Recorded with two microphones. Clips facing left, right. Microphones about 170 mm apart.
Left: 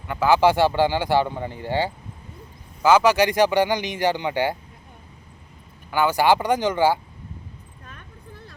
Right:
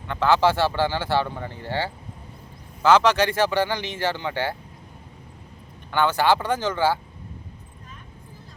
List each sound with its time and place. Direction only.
0.1 s speech: 10° left (ahead or behind)
5.9 s speech: 10° left (ahead or behind)